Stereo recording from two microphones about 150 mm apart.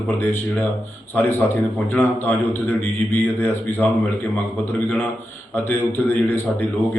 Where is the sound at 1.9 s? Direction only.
10° left (ahead or behind).